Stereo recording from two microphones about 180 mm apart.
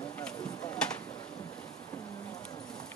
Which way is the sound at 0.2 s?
5° left (ahead or behind).